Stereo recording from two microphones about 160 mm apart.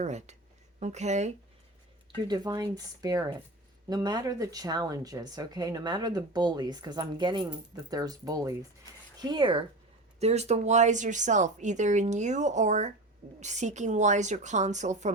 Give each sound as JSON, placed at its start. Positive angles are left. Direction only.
{"t": 0.0, "sound": "speech", "side_deg": -45}
{"t": 2.2, "sound": "speech", "side_deg": -25}
{"t": 10.2, "sound": "speech", "side_deg": -40}